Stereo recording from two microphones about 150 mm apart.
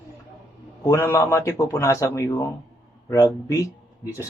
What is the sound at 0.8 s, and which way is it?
A man's voice, 20° left (ahead or behind).